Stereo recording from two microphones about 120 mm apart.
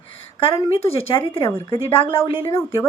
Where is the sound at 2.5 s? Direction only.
25° left (ahead or behind).